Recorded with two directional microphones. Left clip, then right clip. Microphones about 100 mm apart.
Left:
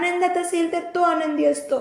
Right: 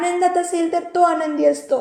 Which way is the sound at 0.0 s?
25° right (ahead or behind).